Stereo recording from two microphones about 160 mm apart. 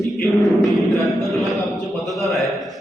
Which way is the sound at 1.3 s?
Centre (ahead or behind).